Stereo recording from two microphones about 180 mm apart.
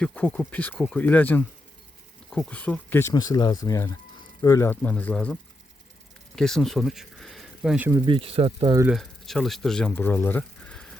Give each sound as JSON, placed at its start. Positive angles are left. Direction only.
{"t": 0.0, "sound": "speech", "side_deg": 5}
{"t": 7.9, "sound": "speech", "side_deg": -25}
{"t": 8.9, "sound": "speech", "side_deg": 0}